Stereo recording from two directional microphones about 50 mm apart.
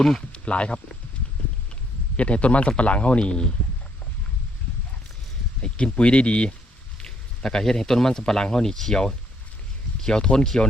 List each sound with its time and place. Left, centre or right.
0.0 s speech: centre
0.3 s speech: left
2.1 s a man's voice: left
5.6 s a man's voice: left